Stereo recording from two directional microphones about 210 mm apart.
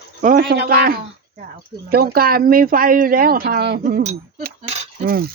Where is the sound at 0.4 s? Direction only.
50° right (ahead or behind); by 4.8 s 30° right (ahead or behind).